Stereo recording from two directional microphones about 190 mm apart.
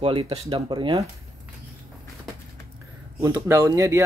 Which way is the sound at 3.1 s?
15° right (ahead or behind).